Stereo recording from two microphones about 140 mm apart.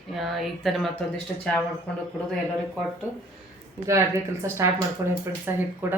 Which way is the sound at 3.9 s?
20° right (ahead or behind).